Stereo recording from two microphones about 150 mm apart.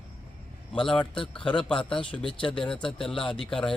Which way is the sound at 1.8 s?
35° left (ahead or behind).